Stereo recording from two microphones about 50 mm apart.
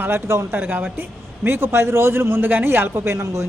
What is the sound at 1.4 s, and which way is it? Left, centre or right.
A man's voice, right.